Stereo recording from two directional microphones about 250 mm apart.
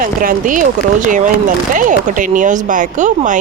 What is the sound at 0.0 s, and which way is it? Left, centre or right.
Speech, right.